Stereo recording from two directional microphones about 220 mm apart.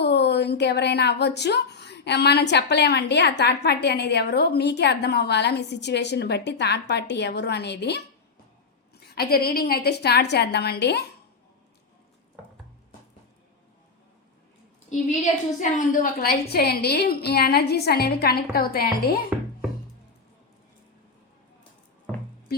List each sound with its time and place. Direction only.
0.0 s a woman's voice: 50° left (ahead or behind)
14.8 s a woman's voice: 35° left (ahead or behind)